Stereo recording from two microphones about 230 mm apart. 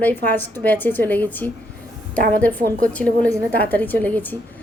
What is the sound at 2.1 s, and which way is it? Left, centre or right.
Speech, right.